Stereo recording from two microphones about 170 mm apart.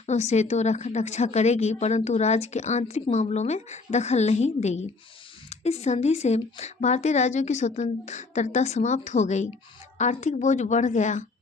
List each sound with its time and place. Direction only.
0.0 s a woman's voice: 40° left (ahead or behind)